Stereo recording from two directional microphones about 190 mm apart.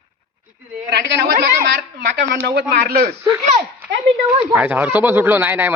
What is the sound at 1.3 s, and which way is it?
A woman's voice, 45° right (ahead or behind).